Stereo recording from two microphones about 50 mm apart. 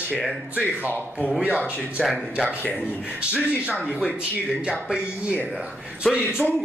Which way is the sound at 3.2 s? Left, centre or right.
Right.